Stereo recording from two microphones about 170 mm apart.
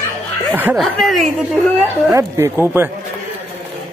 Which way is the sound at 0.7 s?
Centre (ahead or behind).